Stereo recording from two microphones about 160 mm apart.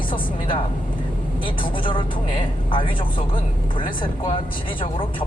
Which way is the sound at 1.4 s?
30° left (ahead or behind).